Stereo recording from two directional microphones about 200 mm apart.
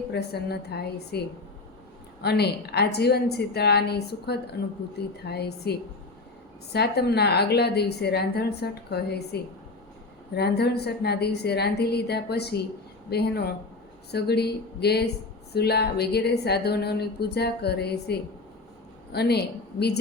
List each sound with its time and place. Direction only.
0.1 s a woman's voice: 55° left (ahead or behind)
2.2 s a woman's voice: 55° left (ahead or behind)
6.7 s a woman's voice: 55° left (ahead or behind)